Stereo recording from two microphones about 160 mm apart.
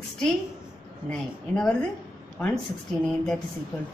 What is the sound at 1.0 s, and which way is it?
A woman's voice, 5° left (ahead or behind).